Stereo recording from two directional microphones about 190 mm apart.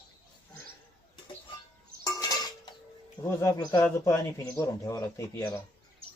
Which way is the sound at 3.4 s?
20° left (ahead or behind).